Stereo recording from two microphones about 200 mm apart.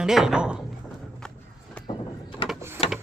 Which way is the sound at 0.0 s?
Centre (ahead or behind).